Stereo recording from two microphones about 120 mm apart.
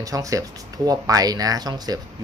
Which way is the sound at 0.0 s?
30° right (ahead or behind).